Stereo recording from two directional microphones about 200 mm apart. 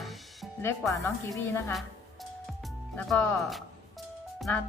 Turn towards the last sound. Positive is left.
turn(degrees=0)  # may be behind; listen again after turning